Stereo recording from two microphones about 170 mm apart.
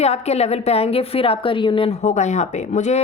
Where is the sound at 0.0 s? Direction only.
40° left (ahead or behind).